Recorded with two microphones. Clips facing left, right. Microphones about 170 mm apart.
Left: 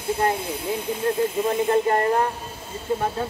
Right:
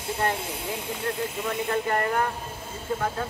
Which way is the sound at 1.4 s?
30° left (ahead or behind).